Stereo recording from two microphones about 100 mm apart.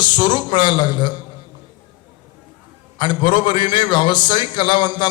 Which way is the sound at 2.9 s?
50° left (ahead or behind).